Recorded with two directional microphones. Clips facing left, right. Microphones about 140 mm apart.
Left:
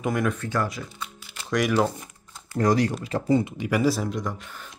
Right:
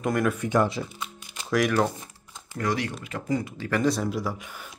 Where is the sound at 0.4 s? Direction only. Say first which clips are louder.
Right 4 dB; 20° right (ahead or behind).